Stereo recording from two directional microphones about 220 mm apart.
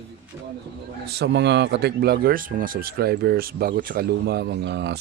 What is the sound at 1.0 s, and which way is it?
Speech, 50° right (ahead or behind).